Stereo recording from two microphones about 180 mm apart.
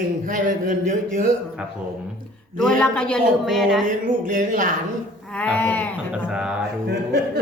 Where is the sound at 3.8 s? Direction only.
45° right (ahead or behind).